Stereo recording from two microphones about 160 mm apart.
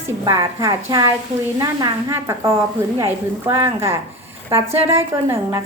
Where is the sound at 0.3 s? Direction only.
20° right (ahead or behind).